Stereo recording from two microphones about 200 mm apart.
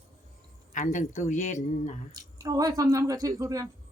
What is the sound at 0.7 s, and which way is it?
A woman's voice, 40° left (ahead or behind).